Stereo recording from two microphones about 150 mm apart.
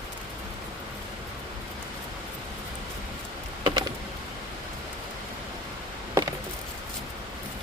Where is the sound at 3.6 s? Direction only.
30° right (ahead or behind).